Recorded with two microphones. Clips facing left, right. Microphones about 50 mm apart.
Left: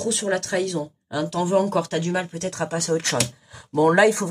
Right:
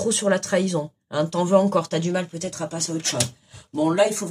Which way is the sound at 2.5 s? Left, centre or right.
Left.